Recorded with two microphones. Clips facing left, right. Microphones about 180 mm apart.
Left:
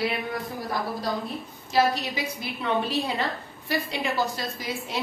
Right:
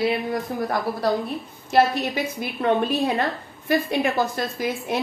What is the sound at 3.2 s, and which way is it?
A woman's voice, 50° right (ahead or behind).